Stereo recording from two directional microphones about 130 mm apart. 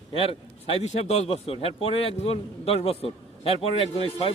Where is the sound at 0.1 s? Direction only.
45° left (ahead or behind).